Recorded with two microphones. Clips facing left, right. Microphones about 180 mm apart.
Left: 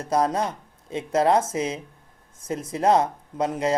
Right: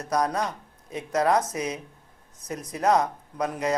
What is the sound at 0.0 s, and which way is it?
Speech, 25° left (ahead or behind).